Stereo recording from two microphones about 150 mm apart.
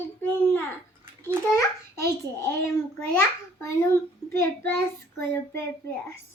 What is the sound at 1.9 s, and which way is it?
Speech, 20° left (ahead or behind).